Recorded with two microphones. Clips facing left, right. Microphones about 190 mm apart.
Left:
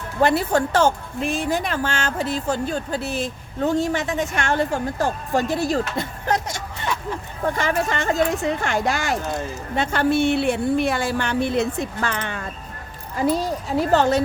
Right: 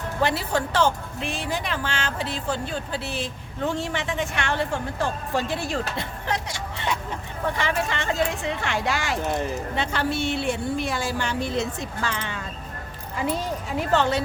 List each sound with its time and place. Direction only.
0.2 s a woman's voice: 50° left (ahead or behind)
13.1 s a woman's voice: 40° left (ahead or behind)